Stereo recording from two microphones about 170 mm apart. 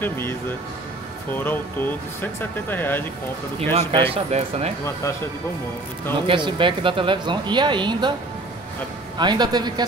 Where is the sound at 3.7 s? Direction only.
35° right (ahead or behind).